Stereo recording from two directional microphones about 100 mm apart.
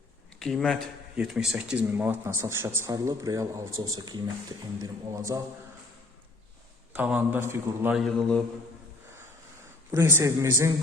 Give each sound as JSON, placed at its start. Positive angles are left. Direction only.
{"t": 0.3, "sound": "speech", "side_deg": 5}
{"t": 1.1, "sound": "speech", "side_deg": -5}
{"t": 4.8, "sound": "a man's voice", "side_deg": -30}
{"t": 6.9, "sound": "a man's voice", "side_deg": -15}
{"t": 7.9, "sound": "speech", "side_deg": 5}
{"t": 9.9, "sound": "speech", "side_deg": -25}